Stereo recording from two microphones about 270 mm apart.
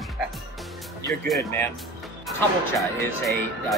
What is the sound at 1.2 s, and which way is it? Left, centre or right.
Speech, centre.